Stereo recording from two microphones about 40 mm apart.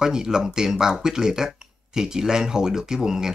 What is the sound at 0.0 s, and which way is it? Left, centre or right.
Speech, centre.